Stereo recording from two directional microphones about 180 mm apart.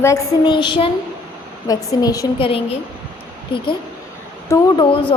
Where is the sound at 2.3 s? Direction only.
30° left (ahead or behind).